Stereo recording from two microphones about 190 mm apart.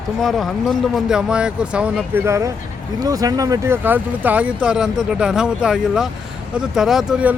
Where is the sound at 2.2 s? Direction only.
15° right (ahead or behind).